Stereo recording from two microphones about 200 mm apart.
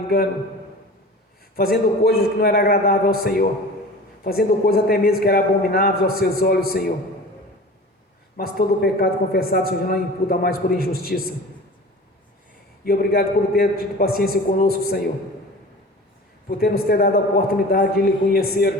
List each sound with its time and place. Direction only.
1.5 s a man's voice: 50° left (ahead or behind)
8.4 s a man's voice: 50° left (ahead or behind)
12.8 s a man's voice: 50° left (ahead or behind)
16.5 s a man's voice: 50° left (ahead or behind)